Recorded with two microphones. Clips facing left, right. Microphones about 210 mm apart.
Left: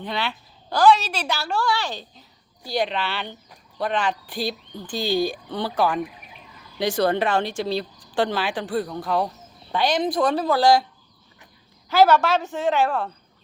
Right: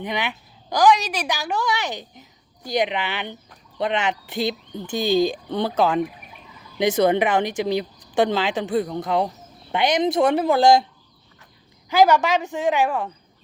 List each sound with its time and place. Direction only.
0.0 s a woman's voice: 15° right (ahead or behind)
11.9 s a woman's voice: 15° right (ahead or behind)